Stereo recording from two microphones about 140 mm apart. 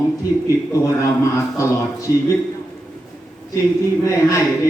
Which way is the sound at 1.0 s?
20° left (ahead or behind).